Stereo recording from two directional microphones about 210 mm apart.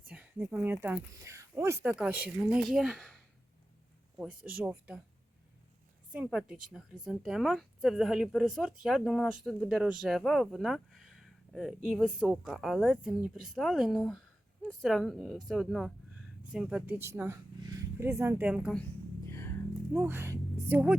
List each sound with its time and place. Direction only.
0.1 s speech: 5° right (ahead or behind)
4.6 s speech: 10° right (ahead or behind)
6.1 s speech: 5° right (ahead or behind)
18.8 s music: 10° left (ahead or behind)
19.9 s speech: 10° right (ahead or behind)